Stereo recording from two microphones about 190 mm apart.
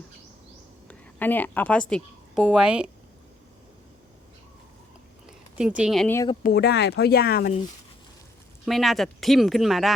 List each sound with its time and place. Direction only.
0.9 s a woman's voice: 10° left (ahead or behind)
1.9 s a woman's voice: centre (ahead or behind)
5.2 s a sound: 5° right (ahead or behind)
6.4 s speech: 55° left (ahead or behind)
8.6 s speech: centre (ahead or behind)